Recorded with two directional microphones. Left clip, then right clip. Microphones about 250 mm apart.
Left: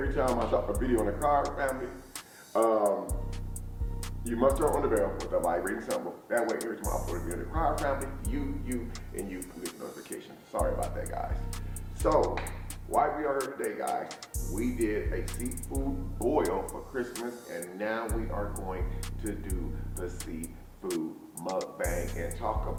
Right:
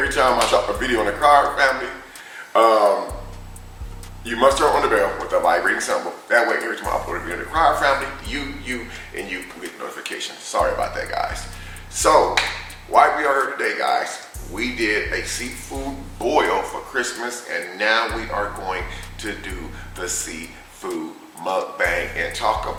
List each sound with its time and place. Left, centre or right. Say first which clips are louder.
0.0 s speech: right 12 dB; centre
4.3 s speech: right 11 dB; centre
5.9 s speech: right 12 dB; right
21.4 s speech: right 12 dB; centre